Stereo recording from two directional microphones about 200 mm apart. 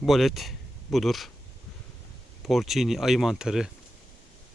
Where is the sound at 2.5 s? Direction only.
Centre (ahead or behind).